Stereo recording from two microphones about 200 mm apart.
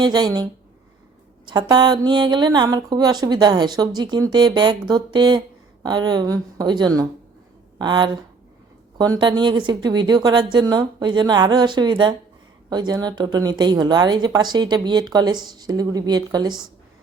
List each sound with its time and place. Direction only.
0.0 s a woman's voice: 20° right (ahead or behind)
1.5 s a woman's voice: 20° right (ahead or behind)